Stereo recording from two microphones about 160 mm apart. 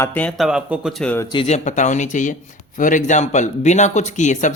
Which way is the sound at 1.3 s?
35° left (ahead or behind).